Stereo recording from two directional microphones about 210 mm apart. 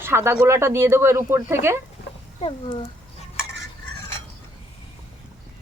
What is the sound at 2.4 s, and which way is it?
Speech, 25° left (ahead or behind).